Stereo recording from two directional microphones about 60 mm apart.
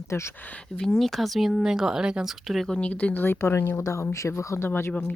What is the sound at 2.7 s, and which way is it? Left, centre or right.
Speech, centre.